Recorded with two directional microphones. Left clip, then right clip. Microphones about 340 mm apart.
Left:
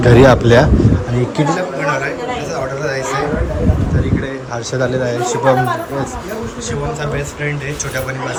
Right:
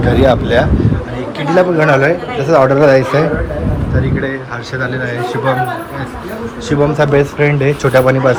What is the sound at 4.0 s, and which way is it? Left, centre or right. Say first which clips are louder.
Speech: right 3 dB; centre.